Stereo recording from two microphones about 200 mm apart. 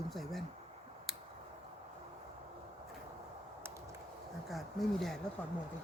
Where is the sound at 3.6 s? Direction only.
15° right (ahead or behind).